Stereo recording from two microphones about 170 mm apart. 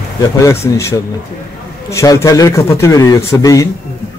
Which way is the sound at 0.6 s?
15° left (ahead or behind).